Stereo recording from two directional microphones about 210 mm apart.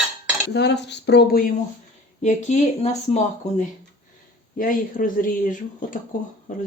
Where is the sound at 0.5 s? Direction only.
55° left (ahead or behind).